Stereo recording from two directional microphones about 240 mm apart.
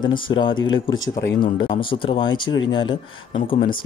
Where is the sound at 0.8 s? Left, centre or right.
Left.